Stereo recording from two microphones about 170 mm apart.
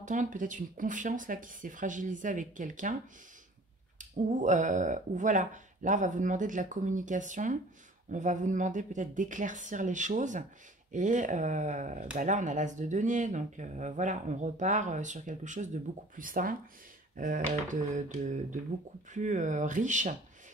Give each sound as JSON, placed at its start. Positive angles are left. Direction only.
{"t": 0.0, "sound": "speech", "side_deg": -50}
{"t": 4.0, "sound": "speech", "side_deg": -45}